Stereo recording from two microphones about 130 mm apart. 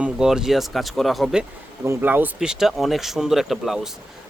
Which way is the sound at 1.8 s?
20° right (ahead or behind).